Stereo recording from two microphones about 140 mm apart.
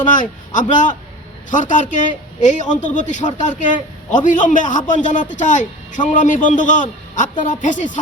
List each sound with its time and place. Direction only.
0.0 s a man's voice: 65° left (ahead or behind)